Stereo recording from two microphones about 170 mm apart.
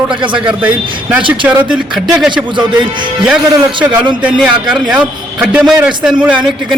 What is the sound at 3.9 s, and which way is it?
A man's voice, 5° right (ahead or behind).